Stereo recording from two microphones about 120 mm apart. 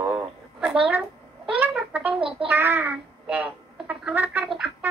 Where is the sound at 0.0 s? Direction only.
10° right (ahead or behind).